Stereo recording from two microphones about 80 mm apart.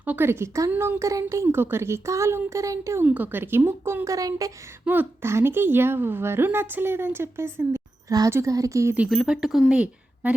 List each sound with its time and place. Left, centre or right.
0.0 s speech: centre
0.3 s speech: right
3.0 s speech: right
4.9 s a woman's voice: right
9.0 s speech: centre